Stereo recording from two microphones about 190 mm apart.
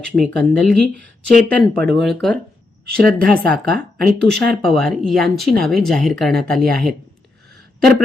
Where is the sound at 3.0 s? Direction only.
50° right (ahead or behind).